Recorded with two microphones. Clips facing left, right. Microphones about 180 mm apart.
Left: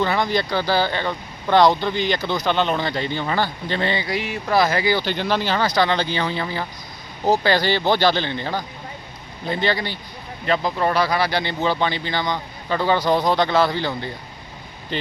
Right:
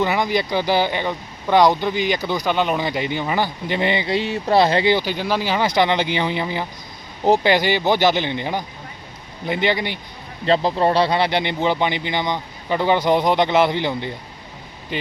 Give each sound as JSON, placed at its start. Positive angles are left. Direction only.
{"t": 0.0, "sound": "speech", "side_deg": -15}
{"t": 5.0, "sound": "speech", "side_deg": -5}
{"t": 10.4, "sound": "speech", "side_deg": -30}